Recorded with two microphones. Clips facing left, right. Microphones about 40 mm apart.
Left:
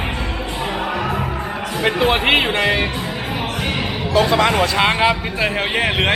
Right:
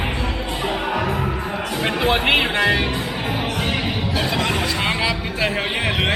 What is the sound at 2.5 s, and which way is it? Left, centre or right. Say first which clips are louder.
Speech: left 1 dB; left.